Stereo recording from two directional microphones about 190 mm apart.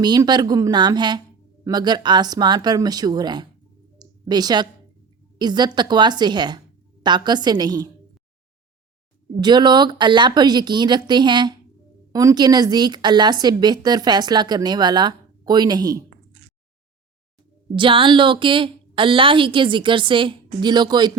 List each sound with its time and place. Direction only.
0.0 s a woman's voice: 20° right (ahead or behind)
3.9 s clicking: 20° right (ahead or behind)
5.4 s a woman's voice: 20° right (ahead or behind)
9.4 s a woman's voice: 25° right (ahead or behind)
17.7 s a woman's voice: 25° right (ahead or behind)